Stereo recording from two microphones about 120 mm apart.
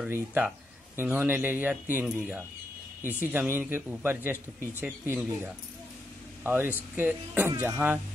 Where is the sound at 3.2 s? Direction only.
15° right (ahead or behind).